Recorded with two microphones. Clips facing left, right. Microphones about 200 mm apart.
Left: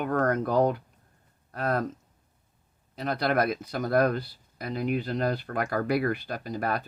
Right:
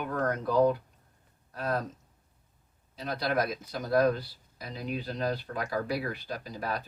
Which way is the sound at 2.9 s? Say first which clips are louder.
Left 4 dB; 60° left (ahead or behind).